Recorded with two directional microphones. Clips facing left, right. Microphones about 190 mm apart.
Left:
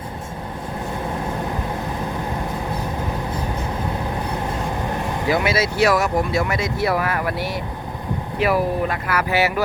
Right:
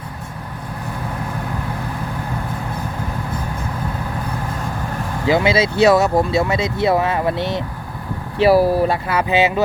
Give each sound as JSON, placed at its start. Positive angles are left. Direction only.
{"t": 5.3, "sound": "speech", "side_deg": -25}